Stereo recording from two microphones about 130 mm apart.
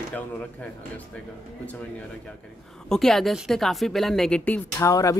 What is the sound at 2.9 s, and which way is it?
Speech, 5° left (ahead or behind).